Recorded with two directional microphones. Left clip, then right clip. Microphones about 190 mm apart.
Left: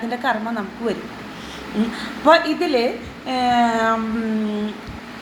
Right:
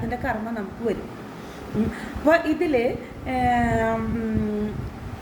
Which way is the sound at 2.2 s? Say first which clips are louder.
Left 5 dB; 15° right (ahead or behind).